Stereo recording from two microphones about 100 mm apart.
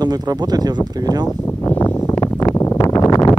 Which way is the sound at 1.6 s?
25° left (ahead or behind).